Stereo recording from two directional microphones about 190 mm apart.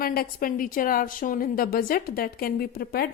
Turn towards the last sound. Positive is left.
turn(degrees=55)  # may be behind; listen again after turning